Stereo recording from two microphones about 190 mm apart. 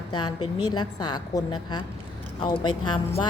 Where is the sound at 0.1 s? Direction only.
20° left (ahead or behind).